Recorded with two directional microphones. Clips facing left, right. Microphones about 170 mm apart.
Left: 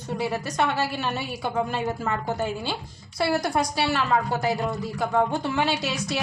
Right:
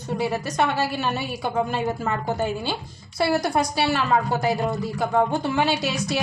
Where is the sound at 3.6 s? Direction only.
5° right (ahead or behind).